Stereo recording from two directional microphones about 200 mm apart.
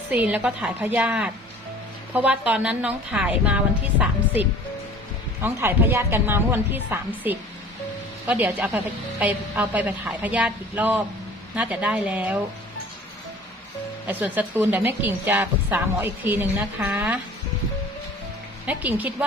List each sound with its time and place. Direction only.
0.1 s a woman's voice: 10° right (ahead or behind)
5.4 s a woman's voice: 10° right (ahead or behind)
14.1 s a woman's voice: 10° right (ahead or behind)
18.6 s a woman's voice: 10° right (ahead or behind)